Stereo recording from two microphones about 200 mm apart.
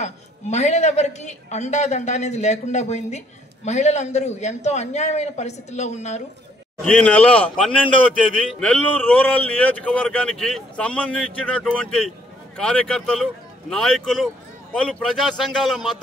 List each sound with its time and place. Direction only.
0.0 s a woman's voice: 35° left (ahead or behind)
6.8 s speech: 5° left (ahead or behind)